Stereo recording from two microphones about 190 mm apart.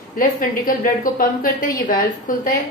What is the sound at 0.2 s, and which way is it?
A woman's voice, 45° left (ahead or behind).